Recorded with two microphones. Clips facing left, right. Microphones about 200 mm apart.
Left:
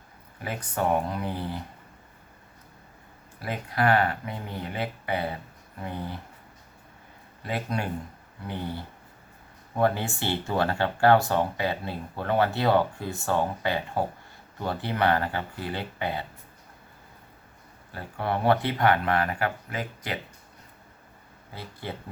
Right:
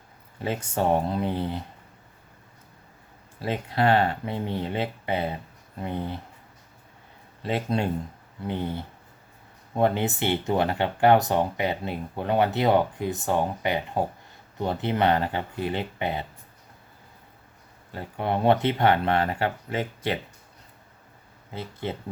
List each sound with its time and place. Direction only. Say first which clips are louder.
0.4 s speech: right 3 dB; 25° right (ahead or behind)
3.4 s speech: right 2 dB; 25° right (ahead or behind)
7.4 s speech: right 4 dB; 25° right (ahead or behind)
17.9 s speech: right 2 dB; 20° right (ahead or behind)
21.5 s speech: right 5 dB; 20° right (ahead or behind)